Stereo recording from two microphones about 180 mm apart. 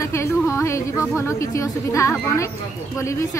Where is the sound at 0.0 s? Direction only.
15° left (ahead or behind).